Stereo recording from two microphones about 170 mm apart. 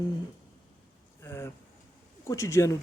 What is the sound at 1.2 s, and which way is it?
Speech, 15° left (ahead or behind).